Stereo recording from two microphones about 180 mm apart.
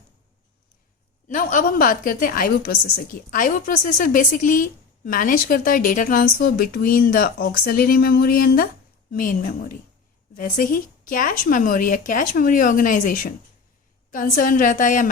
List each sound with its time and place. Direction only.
1.3 s a woman's voice: 45° left (ahead or behind)